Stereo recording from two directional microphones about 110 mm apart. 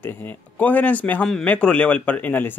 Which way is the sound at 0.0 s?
20° left (ahead or behind).